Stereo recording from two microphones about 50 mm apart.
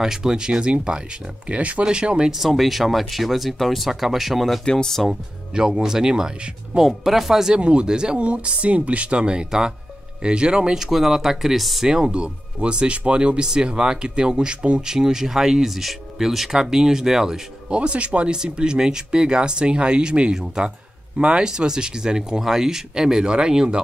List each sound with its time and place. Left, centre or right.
0.0 s speech: centre
2.3 s speech: centre
4.6 s speech: centre
5.5 s speech: centre
7.5 s speech: right; by 11.9 s centre
11.9 s speech: centre